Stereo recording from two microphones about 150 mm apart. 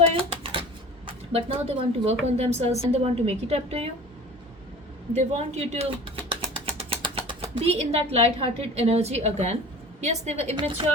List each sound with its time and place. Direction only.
0.0 s a sound: 40° right (ahead or behind)
1.0 s a woman's voice: 40° right (ahead or behind)
5.1 s a woman's voice: 45° right (ahead or behind)
10.6 s a woman's voice: 35° right (ahead or behind)